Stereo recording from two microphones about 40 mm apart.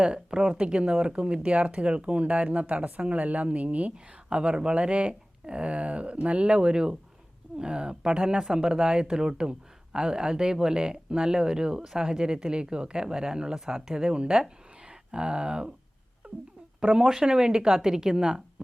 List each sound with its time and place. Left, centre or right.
0.0 s speech: right
3.9 s speech: right
16.8 s speech: right
17.1 s a woman's voice: centre